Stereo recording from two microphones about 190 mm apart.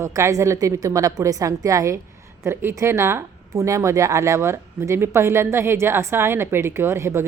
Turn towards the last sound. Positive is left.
turn(degrees=-15)  # may be behind; listen again after turning